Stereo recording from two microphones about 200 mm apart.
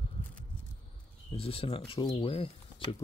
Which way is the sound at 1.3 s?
30° left (ahead or behind).